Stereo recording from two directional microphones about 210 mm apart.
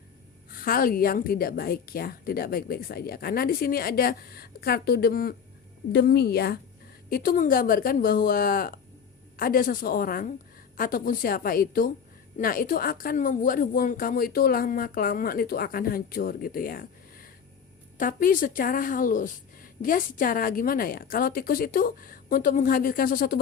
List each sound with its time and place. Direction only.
0.5 s a woman's voice: 45° left (ahead or behind)